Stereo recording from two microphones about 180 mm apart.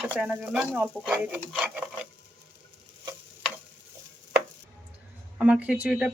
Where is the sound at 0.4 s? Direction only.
5° right (ahead or behind).